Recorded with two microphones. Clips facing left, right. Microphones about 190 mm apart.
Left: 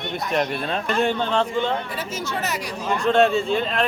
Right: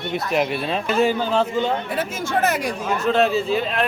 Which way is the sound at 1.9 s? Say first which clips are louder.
Right 5 dB; 50° right (ahead or behind).